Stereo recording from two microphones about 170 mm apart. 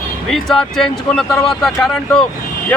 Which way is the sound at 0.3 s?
Centre (ahead or behind).